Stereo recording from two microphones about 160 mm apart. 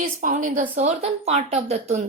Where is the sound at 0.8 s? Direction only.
40° right (ahead or behind).